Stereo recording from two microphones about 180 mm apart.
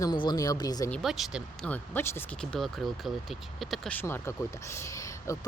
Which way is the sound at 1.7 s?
10° left (ahead or behind).